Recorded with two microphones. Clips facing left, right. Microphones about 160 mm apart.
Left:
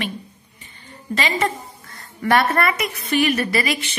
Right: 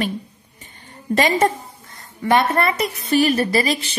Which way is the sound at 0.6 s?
45° right (ahead or behind).